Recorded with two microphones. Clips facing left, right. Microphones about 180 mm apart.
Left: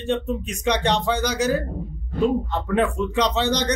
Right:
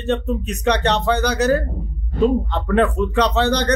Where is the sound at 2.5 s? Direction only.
10° left (ahead or behind).